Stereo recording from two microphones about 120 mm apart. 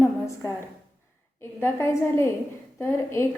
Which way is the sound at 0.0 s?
20° left (ahead or behind).